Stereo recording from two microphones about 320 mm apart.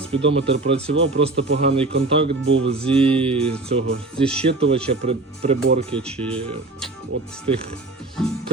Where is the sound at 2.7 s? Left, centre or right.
Centre.